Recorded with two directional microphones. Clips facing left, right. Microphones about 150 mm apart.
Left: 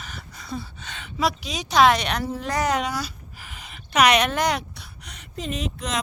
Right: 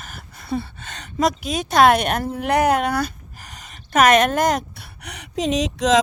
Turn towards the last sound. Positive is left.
turn(degrees=-90)